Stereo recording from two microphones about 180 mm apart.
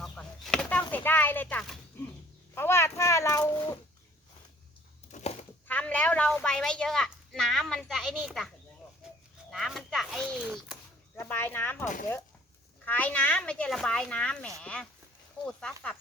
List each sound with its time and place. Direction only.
0.0 s a sound: 5° left (ahead or behind)
2.6 s speech: 15° left (ahead or behind)
5.1 s a sound: 35° left (ahead or behind)
5.6 s a child's voice: 10° left (ahead or behind)
9.5 s a child's voice: centre (ahead or behind)
11.2 s speech: 15° left (ahead or behind)